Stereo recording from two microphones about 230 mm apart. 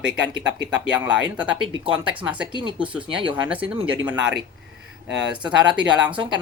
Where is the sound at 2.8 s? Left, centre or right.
Centre.